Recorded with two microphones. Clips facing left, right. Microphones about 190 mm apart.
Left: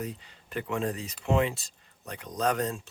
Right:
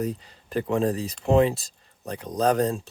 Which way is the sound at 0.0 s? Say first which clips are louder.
Right 8 dB; 40° right (ahead or behind).